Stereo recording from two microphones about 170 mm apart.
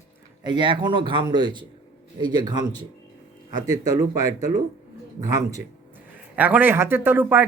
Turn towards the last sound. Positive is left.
turn(degrees=-10)  # may be behind; listen again after turning